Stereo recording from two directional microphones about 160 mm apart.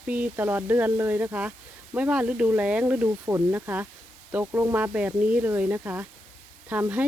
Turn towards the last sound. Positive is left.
turn(degrees=-10)  # may be behind; listen again after turning